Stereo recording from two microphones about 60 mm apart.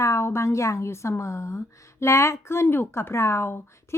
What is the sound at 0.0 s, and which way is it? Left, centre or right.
A woman's voice, left.